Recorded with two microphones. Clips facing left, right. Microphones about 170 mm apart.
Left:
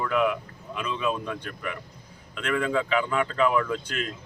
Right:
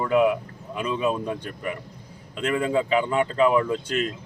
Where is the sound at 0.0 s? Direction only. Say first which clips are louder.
Right 5 dB; 30° right (ahead or behind).